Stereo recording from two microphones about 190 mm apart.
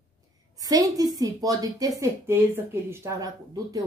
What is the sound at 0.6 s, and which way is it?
A woman's voice, 20° right (ahead or behind).